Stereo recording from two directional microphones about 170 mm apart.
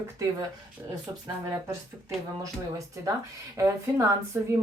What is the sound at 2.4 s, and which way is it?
Speech, 20° right (ahead or behind).